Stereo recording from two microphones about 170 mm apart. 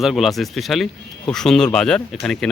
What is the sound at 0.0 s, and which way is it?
Speech, centre (ahead or behind).